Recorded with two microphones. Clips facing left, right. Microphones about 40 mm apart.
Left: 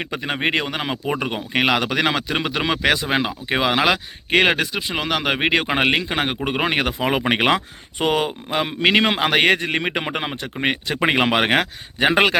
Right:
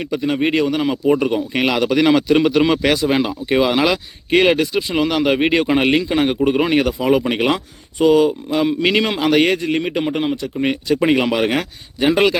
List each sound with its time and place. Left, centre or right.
0.0 s speech: left
1.0 s a man's voice: centre
2.1 s speech: centre
3.9 s speech: left
4.7 s a man's voice: centre; by 8.4 s left
8.4 s a man's voice: left
10.6 s a man's voice: left